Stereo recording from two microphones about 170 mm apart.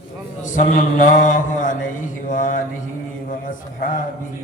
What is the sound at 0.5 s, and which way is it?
A man's voice, 50° left (ahead or behind).